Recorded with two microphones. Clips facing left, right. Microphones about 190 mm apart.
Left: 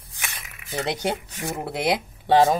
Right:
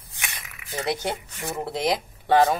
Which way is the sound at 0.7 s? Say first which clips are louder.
Left 1 dB; 20° left (ahead or behind).